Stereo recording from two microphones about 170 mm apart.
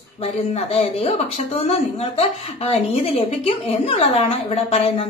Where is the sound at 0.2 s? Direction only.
35° left (ahead or behind).